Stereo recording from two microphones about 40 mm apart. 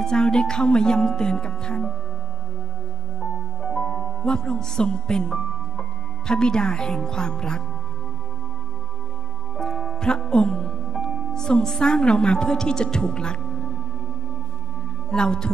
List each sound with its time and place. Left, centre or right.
0.0 s a woman's voice: centre
3.2 s music: centre
6.9 s speech: centre
9.6 s music: centre
11.8 s a woman's voice: centre
15.0 s a woman's voice: centre